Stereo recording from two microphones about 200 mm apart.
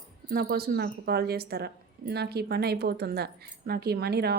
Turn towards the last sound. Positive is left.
turn(degrees=-55)  # may be behind; listen again after turning